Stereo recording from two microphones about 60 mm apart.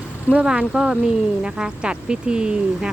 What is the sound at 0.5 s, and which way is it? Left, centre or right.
Speech, centre.